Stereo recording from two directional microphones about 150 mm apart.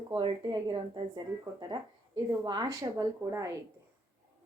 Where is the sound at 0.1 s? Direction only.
35° right (ahead or behind).